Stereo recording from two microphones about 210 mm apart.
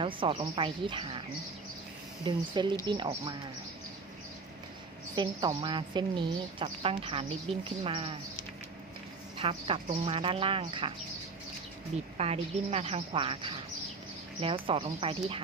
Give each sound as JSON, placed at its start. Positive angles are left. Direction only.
{"t": 0.0, "sound": "a woman's voice", "side_deg": -25}
{"t": 2.2, "sound": "a woman's voice", "side_deg": -20}
{"t": 5.1, "sound": "a woman's voice", "side_deg": -20}
{"t": 9.4, "sound": "a woman's voice", "side_deg": -25}
{"t": 12.1, "sound": "a woman's voice", "side_deg": -30}